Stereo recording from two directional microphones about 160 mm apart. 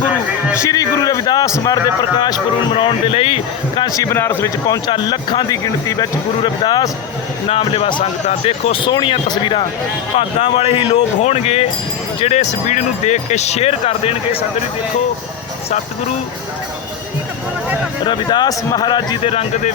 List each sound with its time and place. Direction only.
0.5 s speech: 20° left (ahead or behind); by 3.8 s 40° left (ahead or behind)
3.8 s speech: 20° left (ahead or behind)
4.9 s speech: 30° left (ahead or behind)
18.0 s speech: 30° left (ahead or behind)